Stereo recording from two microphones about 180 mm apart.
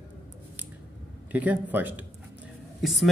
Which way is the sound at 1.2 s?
10° right (ahead or behind).